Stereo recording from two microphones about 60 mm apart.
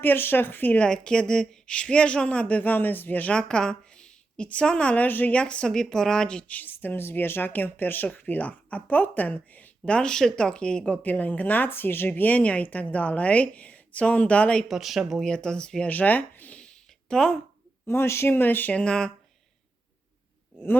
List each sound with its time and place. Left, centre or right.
0.0 s speech: left
0.8 s speech: centre
3.3 s a woman's voice: centre
5.0 s speech: left
5.3 s speech: centre
6.6 s speech: left
11.7 s speech: left
14.7 s speech: centre
15.2 s speech: centre
15.9 s speech: left
16.6 s a sound: centre
17.8 s speech: left
18.7 s speech: centre